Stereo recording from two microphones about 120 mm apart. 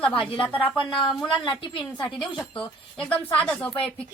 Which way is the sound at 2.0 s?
Centre (ahead or behind).